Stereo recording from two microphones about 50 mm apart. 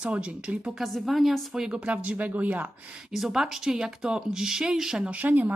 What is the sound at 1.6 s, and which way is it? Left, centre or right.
Speech, right.